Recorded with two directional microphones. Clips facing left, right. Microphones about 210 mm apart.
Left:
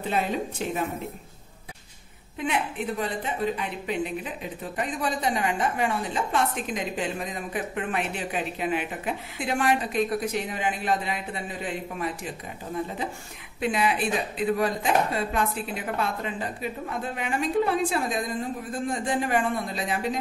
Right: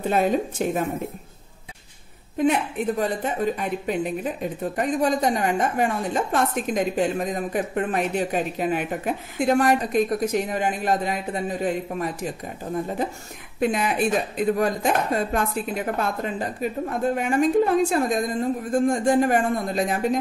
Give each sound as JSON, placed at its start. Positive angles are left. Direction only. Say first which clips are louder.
{"t": 0.1, "sound": "speech", "louder": "right 5 dB", "side_deg": -45}
{"t": 3.0, "sound": "speech", "louder": "right 4 dB", "side_deg": -45}
{"t": 13.6, "sound": "speech", "louder": "right 3 dB", "side_deg": -45}